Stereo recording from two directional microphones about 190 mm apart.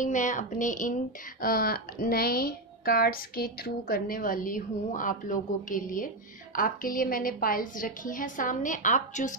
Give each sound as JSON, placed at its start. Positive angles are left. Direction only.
{"t": 0.0, "sound": "a woman's voice", "side_deg": 40}